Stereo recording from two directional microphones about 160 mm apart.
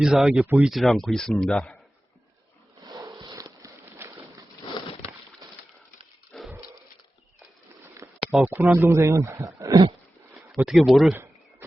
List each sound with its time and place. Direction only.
0.0 s speech: 5° right (ahead or behind)
2.8 s a sound: 25° right (ahead or behind)
6.3 s dog: 5° left (ahead or behind)
7.9 s speech: 10° right (ahead or behind)
10.6 s speech: 5° right (ahead or behind)